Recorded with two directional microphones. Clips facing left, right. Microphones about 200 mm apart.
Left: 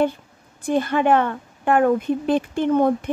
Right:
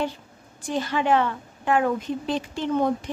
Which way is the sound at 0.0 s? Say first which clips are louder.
Left 7 dB; 55° left (ahead or behind).